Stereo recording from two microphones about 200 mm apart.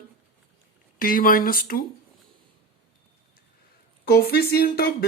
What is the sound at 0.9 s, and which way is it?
Speech, 45° left (ahead or behind).